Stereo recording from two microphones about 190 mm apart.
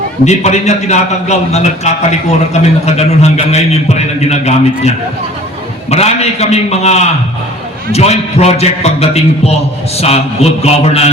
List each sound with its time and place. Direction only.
0.3 s a man's voice: 35° left (ahead or behind)
10.6 s a man's voice: 30° left (ahead or behind)